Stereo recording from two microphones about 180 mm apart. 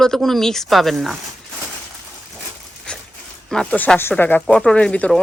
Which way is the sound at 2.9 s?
5° left (ahead or behind).